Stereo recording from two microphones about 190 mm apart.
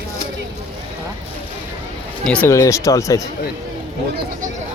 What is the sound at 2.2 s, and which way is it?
Speech, 5° left (ahead or behind).